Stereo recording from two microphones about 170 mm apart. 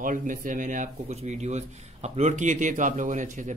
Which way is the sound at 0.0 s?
50° right (ahead or behind).